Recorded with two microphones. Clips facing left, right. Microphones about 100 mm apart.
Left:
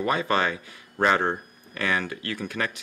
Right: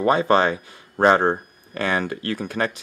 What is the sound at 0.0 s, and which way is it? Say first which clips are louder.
Speech: right 6 dB; 35° right (ahead or behind).